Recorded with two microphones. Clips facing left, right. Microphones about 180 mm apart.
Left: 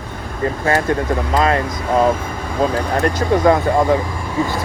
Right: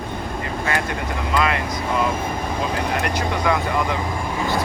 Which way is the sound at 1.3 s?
40° left (ahead or behind).